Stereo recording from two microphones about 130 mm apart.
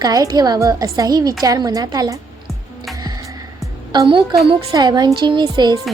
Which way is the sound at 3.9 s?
35° right (ahead or behind).